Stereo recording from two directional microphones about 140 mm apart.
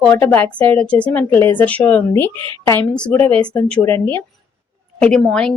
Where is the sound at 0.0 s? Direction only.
10° left (ahead or behind).